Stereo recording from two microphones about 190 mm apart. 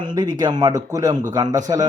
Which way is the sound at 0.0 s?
25° right (ahead or behind).